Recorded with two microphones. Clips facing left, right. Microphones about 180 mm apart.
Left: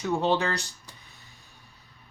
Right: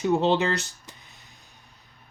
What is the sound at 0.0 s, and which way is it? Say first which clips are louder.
Speech: right 3 dB; 20° right (ahead or behind).